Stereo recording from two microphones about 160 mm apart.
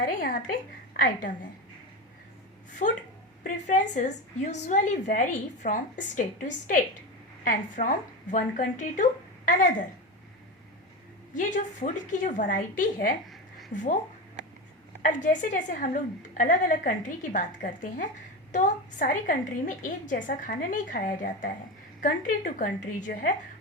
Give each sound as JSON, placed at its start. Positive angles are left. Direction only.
{"t": 0.0, "sound": "a woman's voice", "side_deg": 60}
{"t": 2.8, "sound": "a woman's voice", "side_deg": 50}
{"t": 11.3, "sound": "a woman's voice", "side_deg": 55}
{"t": 15.0, "sound": "a woman's voice", "side_deg": 50}
{"t": 22.0, "sound": "a woman's voice", "side_deg": 55}